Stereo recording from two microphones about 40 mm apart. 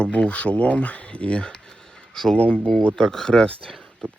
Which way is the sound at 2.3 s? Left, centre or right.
Left.